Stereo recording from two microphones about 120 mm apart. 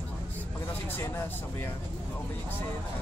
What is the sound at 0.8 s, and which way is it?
Speech, 20° left (ahead or behind).